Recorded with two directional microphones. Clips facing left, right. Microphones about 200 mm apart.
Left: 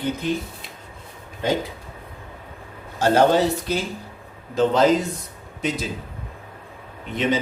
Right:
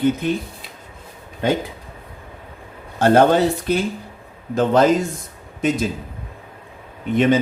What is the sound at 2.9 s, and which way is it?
Speech, 55° right (ahead or behind).